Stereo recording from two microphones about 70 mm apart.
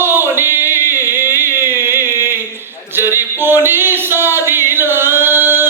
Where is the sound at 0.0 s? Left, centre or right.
Right.